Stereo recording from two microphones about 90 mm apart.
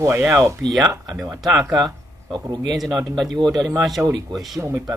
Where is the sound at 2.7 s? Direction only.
Centre (ahead or behind).